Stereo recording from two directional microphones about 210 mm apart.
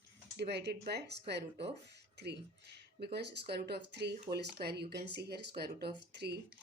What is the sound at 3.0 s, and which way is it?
Speech, 50° right (ahead or behind).